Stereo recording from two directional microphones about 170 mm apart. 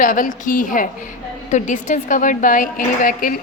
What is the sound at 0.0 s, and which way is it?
A woman's voice, 50° left (ahead or behind).